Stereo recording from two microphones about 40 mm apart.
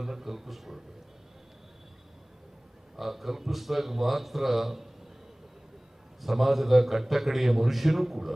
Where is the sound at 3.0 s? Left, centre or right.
Centre.